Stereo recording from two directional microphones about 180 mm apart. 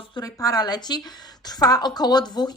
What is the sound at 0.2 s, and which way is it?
A woman's voice, 20° left (ahead or behind).